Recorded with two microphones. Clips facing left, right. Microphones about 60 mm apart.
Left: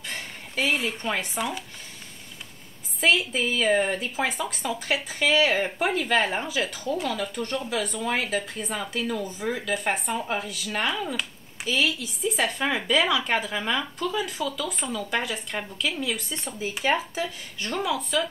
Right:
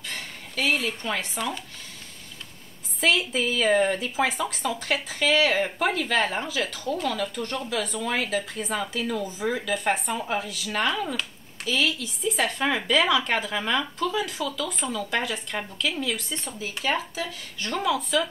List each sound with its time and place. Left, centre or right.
0.0 s speech: left
3.0 s speech: centre
16.7 s speech: centre